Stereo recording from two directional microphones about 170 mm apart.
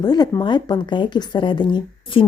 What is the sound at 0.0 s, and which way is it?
Speech, 25° left (ahead or behind).